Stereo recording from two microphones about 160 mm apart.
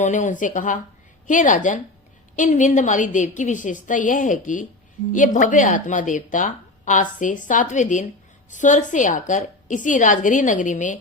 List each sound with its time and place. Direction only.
0.0 s speech: 50° left (ahead or behind)